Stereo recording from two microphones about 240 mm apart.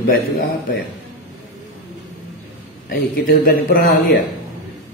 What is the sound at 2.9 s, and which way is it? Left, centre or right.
A man's voice, left.